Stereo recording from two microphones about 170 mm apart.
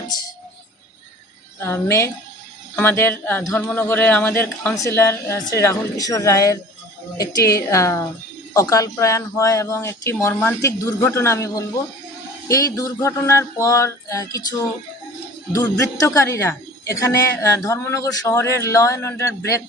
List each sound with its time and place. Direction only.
1.5 s a woman's voice: 15° left (ahead or behind)
12.5 s a sound: 20° left (ahead or behind)
15.5 s a woman's voice: 20° left (ahead or behind)